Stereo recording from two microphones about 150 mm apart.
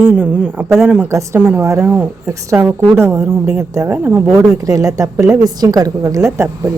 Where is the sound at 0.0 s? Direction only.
10° right (ahead or behind).